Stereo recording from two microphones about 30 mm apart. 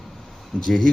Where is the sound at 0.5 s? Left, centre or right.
Left.